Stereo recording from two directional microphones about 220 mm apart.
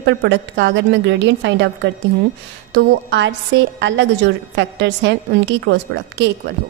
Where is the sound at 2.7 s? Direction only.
55° right (ahead or behind).